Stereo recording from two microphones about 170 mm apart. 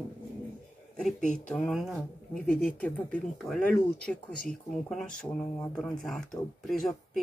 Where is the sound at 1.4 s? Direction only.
5° left (ahead or behind).